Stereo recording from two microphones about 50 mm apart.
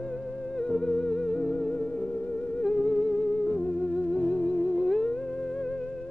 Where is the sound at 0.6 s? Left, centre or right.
Centre.